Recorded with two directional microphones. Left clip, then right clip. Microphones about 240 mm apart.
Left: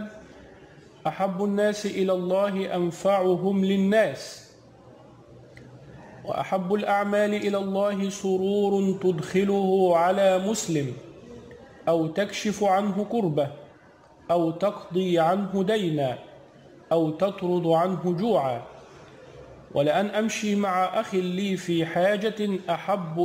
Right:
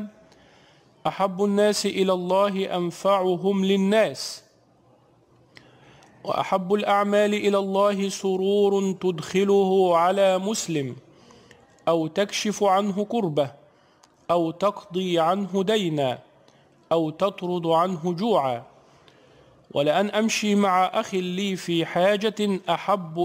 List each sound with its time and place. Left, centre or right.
1.0 s speech: right
6.2 s speech: right
19.7 s speech: right